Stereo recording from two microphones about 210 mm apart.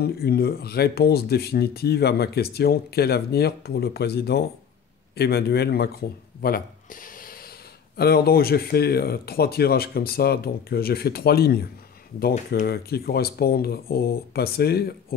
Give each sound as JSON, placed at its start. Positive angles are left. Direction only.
{"t": 0.0, "sound": "speech", "side_deg": 50}